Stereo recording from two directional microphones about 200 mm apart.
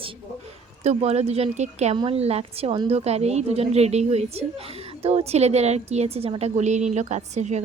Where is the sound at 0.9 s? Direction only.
30° right (ahead or behind).